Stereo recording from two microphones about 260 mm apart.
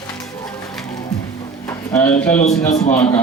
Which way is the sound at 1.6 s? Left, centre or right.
Centre.